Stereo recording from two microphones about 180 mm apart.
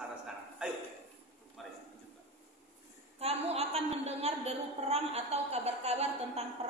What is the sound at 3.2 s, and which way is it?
A woman's voice, 35° right (ahead or behind).